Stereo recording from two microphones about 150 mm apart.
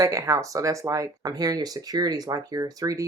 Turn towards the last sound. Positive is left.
turn(degrees=-25)  # may be behind; listen again after turning